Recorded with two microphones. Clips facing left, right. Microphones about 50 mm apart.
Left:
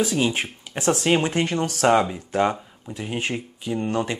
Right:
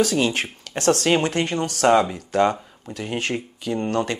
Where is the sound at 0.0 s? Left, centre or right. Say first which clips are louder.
Right 2 dB; right.